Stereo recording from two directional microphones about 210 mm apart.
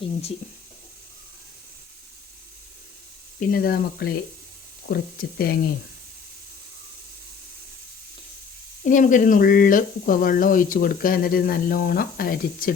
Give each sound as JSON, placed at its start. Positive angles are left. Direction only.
{"t": 0.0, "sound": "speech", "side_deg": 30}
{"t": 3.4, "sound": "speech", "side_deg": 45}
{"t": 8.8, "sound": "speech", "side_deg": 35}